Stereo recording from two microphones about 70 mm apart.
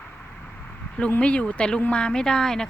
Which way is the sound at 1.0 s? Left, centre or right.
Centre.